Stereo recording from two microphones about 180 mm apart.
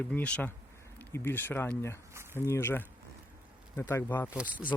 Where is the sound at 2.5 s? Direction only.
15° left (ahead or behind).